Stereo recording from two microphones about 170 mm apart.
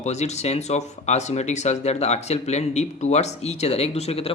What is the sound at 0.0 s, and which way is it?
Speech, 40° left (ahead or behind).